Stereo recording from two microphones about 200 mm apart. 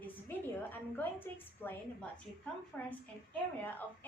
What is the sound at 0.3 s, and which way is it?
A woman's voice, 10° left (ahead or behind).